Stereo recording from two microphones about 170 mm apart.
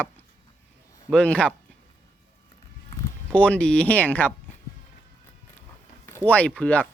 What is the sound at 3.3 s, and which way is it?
Speech, 5° left (ahead or behind).